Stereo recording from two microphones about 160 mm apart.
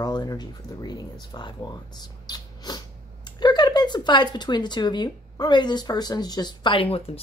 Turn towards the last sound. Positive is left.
turn(degrees=35)  # may be behind; listen again after turning